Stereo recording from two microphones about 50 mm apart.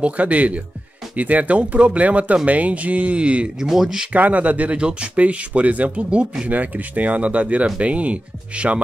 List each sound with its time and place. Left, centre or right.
0.0 s speech: right
3.6 s speech: centre
4.1 s speech: right